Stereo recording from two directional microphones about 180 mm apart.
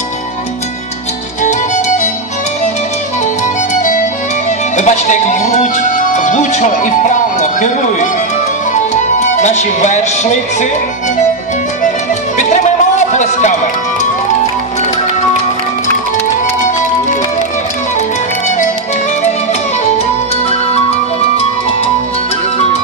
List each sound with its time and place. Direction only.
1.4 s music: 45° left (ahead or behind)
4.5 s speech: 40° left (ahead or behind)
8.7 s music: 40° left (ahead or behind)
12.4 s music: 40° left (ahead or behind)